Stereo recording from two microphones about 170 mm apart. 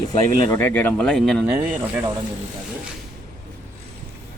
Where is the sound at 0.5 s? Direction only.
10° left (ahead or behind).